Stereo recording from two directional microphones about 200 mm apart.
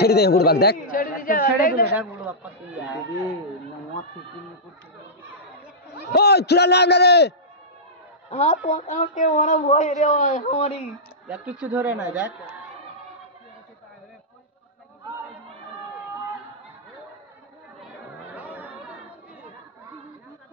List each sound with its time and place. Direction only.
0.0 s speech: 55° left (ahead or behind)
2.0 s speech: 5° right (ahead or behind)
6.1 s a man's voice: 55° left (ahead or behind)
8.3 s speech: 35° left (ahead or behind)
11.2 s speech: 5° right (ahead or behind)
18.3 s chatter: 5° right (ahead or behind)